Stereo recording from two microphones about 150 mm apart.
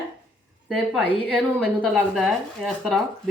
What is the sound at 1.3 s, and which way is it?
Speech, 5° left (ahead or behind).